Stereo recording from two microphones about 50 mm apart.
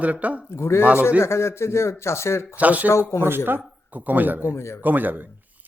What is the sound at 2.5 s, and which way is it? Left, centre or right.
Speech, right.